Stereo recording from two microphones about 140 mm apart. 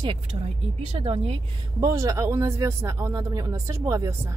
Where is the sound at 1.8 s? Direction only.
25° right (ahead or behind).